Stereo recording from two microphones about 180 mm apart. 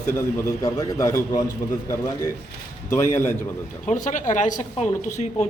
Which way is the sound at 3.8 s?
45° left (ahead or behind).